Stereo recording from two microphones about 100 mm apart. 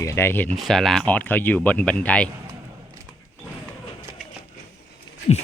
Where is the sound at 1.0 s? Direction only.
15° left (ahead or behind).